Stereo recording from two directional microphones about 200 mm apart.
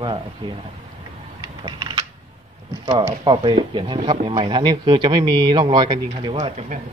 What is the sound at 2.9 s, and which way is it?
Speech, 25° right (ahead or behind).